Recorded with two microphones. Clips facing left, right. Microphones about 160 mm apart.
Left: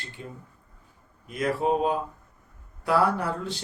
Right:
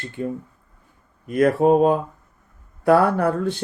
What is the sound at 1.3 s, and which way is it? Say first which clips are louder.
Speech: right 9 dB; 55° right (ahead or behind).